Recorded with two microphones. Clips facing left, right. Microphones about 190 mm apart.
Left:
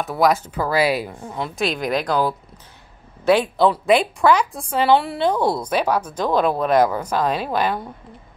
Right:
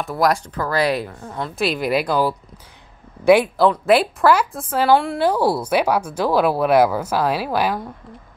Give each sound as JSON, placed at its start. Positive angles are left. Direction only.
{"t": 0.0, "sound": "speech", "side_deg": 0}